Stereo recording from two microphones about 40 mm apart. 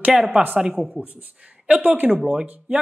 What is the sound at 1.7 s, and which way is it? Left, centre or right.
Speech, right.